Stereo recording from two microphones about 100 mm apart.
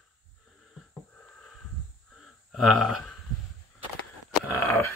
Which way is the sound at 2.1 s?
Centre (ahead or behind).